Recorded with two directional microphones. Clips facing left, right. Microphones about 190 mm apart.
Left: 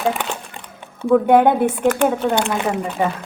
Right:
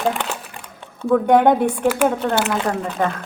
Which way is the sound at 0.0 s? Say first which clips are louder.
Left 1 dB; centre (ahead or behind).